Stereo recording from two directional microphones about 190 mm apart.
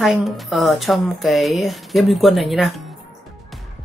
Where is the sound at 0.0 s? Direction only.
Centre (ahead or behind).